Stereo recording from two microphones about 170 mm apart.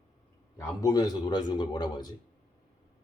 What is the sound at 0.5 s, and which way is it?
A man's voice, 20° left (ahead or behind).